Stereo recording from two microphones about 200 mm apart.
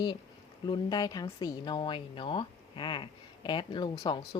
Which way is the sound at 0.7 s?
20° left (ahead or behind).